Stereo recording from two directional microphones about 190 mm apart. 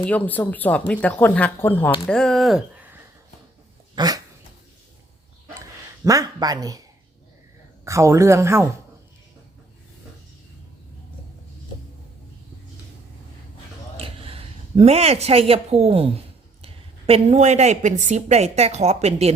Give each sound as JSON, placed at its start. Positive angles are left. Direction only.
{"t": 0.0, "sound": "speech", "side_deg": 10}
{"t": 3.9, "sound": "dog", "side_deg": -20}
{"t": 6.1, "sound": "speech", "side_deg": -20}
{"t": 7.9, "sound": "speech", "side_deg": -15}
{"t": 13.9, "sound": "a woman's voice", "side_deg": -30}